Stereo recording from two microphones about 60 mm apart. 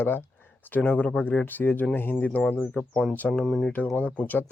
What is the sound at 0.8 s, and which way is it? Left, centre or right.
Speech, left.